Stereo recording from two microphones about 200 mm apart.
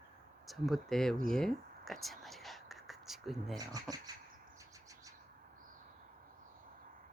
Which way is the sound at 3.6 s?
20° right (ahead or behind).